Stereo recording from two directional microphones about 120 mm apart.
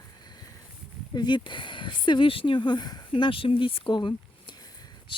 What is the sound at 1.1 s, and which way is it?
Speech, 40° left (ahead or behind).